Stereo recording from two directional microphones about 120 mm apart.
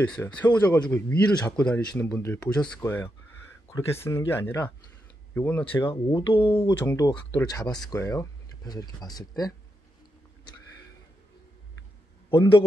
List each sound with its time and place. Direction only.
0.1 s speech: 10° left (ahead or behind)
0.9 s speech: 20° left (ahead or behind)
1.2 s speech: 10° left (ahead or behind)
2.8 s a sound: 20° left (ahead or behind)
3.7 s speech: 20° left (ahead or behind)
5.9 s speech: 45° left (ahead or behind)
6.5 s speech: 25° left (ahead or behind)
12.3 s speech: 45° left (ahead or behind)